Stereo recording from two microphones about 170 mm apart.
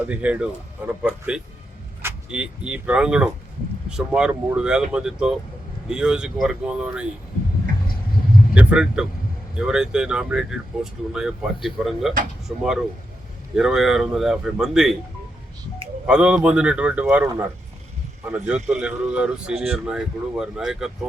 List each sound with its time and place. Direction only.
0.1 s a man's voice: 10° right (ahead or behind)
8.5 s speech: 5° right (ahead or behind)
16.0 s a man's voice: 5° right (ahead or behind)
18.5 s a man's voice: 40° right (ahead or behind)
18.8 s speech: 5° right (ahead or behind)